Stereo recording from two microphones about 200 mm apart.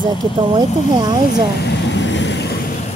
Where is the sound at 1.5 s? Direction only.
55° left (ahead or behind).